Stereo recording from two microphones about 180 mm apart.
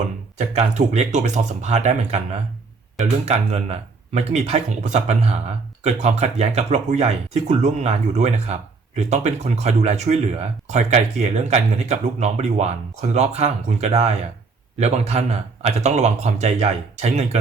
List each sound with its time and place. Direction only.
0.3 s speech: 40° right (ahead or behind)